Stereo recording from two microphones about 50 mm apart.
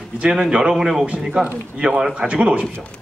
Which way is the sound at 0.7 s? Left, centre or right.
Centre.